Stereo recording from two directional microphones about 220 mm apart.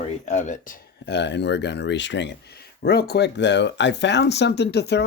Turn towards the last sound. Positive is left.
turn(degrees=50)  # may be behind; listen again after turning